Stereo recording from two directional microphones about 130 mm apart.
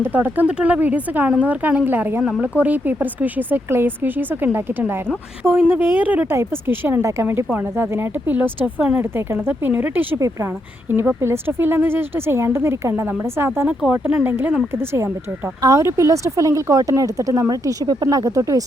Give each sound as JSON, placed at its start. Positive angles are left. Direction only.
{"t": 0.0, "sound": "a woman's voice", "side_deg": -15}